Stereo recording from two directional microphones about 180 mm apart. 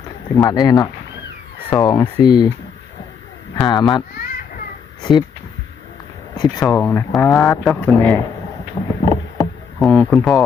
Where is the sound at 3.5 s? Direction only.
25° left (ahead or behind).